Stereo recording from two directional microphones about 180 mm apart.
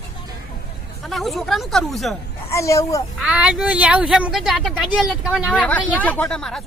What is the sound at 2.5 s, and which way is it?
Speech, 15° left (ahead or behind).